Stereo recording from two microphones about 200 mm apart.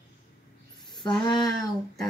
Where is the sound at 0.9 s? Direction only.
20° left (ahead or behind).